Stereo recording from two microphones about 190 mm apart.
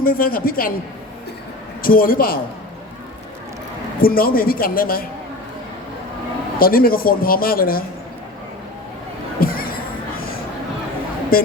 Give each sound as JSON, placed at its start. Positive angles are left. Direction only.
{"t": 0.0, "sound": "speech", "side_deg": 50}
{"t": 1.8, "sound": "speech", "side_deg": 50}
{"t": 4.0, "sound": "speech", "side_deg": 50}
{"t": 6.6, "sound": "speech", "side_deg": 50}
{"t": 9.4, "sound": "a sound", "side_deg": 50}
{"t": 11.3, "sound": "speech", "side_deg": 50}